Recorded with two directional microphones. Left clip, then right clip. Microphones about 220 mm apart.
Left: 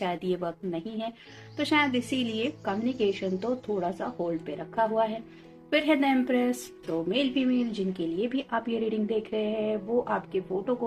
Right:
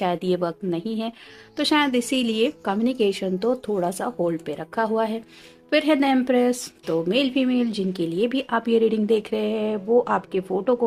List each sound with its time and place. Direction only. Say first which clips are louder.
0.0 s a woman's voice: right 7 dB; 55° right (ahead or behind)